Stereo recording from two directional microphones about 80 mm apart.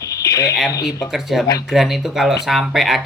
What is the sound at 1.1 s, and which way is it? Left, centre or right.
Speech, centre.